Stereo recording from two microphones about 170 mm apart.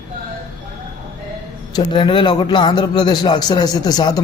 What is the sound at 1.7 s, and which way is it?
A man's voice, 25° left (ahead or behind).